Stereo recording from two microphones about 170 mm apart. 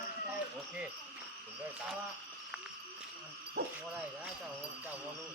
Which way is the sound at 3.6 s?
70° right (ahead or behind).